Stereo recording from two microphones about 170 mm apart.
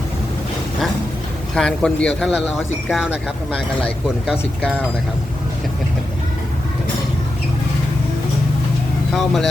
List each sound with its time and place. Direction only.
1.5 s a man's voice: 5° left (ahead or behind)
3.5 s speech: 5° left (ahead or behind)
9.1 s a man's voice: centre (ahead or behind)